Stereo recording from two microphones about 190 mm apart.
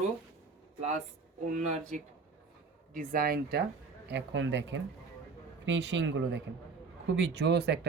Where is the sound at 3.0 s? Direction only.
50° right (ahead or behind).